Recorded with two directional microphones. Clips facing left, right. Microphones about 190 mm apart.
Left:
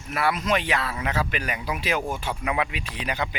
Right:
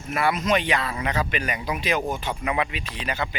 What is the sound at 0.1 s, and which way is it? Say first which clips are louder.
Speech: right 2 dB; centre (ahead or behind).